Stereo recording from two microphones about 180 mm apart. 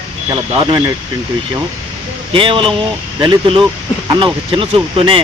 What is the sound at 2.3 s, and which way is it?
Speech, 30° right (ahead or behind).